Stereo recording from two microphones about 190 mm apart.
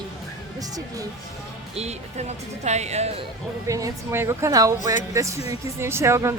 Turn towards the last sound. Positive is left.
turn(degrees=-15)  # may be behind; listen again after turning